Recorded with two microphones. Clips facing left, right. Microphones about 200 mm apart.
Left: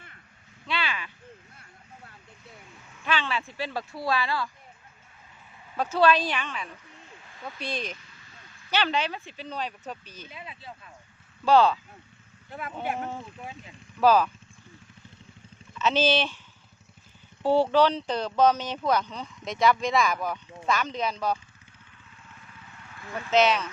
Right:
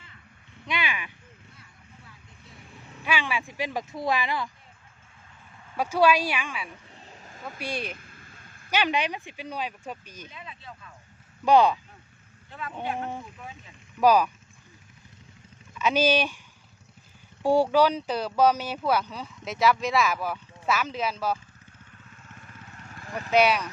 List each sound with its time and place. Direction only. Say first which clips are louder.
0.7 s a sound: even; 15° right (ahead or behind)
3.0 s speech: even; 10° right (ahead or behind)
5.7 s speech: even; 10° right (ahead or behind)
7.2 s a sound: right 4 dB; 40° right (ahead or behind)
7.6 s speech: right 1 dB; 10° right (ahead or behind)
7.9 s a sound: right 4 dB; 50° right (ahead or behind)
8.7 s speech: right 1 dB; 15° right (ahead or behind)
10.3 s speech: left 1 dB; 30° left (ahead or behind)
11.4 s speech: right 1 dB; 15° right (ahead or behind)
14.0 s speech: even; 15° right (ahead or behind)
15.8 s speech: right 1 dB; 10° right (ahead or behind)
17.4 s speech: even; 10° right (ahead or behind)
22.3 s vehicle: right 3 dB; 45° right (ahead or behind)
23.3 s speech: even; 10° right (ahead or behind)